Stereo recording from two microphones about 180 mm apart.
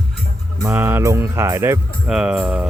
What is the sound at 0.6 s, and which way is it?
Speech, 10° right (ahead or behind).